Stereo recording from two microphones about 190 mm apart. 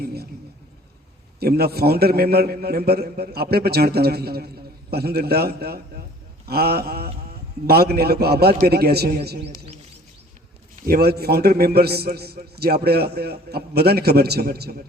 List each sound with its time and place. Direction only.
0.0 s a sound: 55° right (ahead or behind)
1.4 s a man's voice: 55° right (ahead or behind)
10.8 s a man's voice: 50° right (ahead or behind)